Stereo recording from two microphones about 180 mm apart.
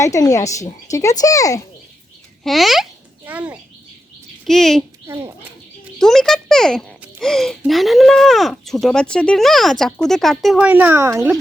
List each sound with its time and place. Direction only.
0.0 s a woman's voice: 20° left (ahead or behind)
2.4 s a child's voice: centre (ahead or behind)
5.0 s speech: 15° right (ahead or behind)
6.0 s a child's voice: centre (ahead or behind); by 11.3 s 15° right (ahead or behind)